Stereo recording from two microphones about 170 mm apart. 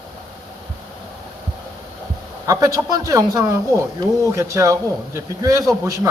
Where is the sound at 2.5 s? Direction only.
20° right (ahead or behind).